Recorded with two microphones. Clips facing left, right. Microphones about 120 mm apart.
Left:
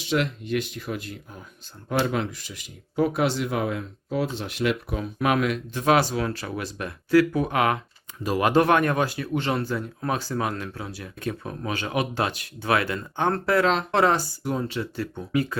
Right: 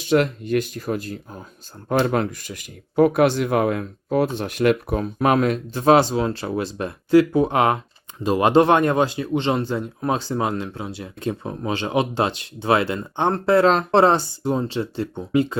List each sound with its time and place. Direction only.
0.1 s speech: 45° right (ahead or behind)
1.9 s speech: 50° right (ahead or behind); by 15.5 s 25° right (ahead or behind)